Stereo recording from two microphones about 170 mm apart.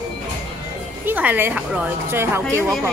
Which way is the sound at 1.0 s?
10° right (ahead or behind).